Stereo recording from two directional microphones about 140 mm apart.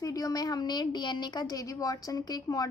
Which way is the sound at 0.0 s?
25° left (ahead or behind).